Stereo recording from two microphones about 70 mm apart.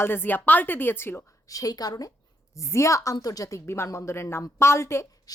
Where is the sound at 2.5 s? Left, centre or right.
Left.